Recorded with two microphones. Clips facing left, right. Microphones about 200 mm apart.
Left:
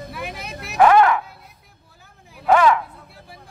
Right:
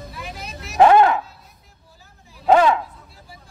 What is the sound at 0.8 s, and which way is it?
Music, 25° right (ahead or behind).